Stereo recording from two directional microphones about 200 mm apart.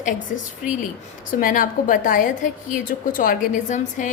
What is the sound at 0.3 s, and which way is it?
A woman's voice, 40° left (ahead or behind).